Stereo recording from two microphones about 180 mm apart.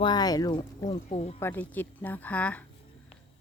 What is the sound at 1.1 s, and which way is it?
Speech, 35° left (ahead or behind).